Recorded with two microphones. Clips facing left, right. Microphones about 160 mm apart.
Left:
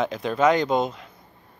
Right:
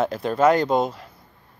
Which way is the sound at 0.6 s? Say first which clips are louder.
Right 2 dB; centre (ahead or behind).